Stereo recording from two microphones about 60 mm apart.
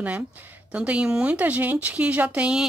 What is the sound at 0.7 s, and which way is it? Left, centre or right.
Speech, centre.